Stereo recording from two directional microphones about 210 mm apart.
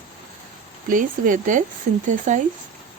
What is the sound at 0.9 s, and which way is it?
Speech, 40° right (ahead or behind).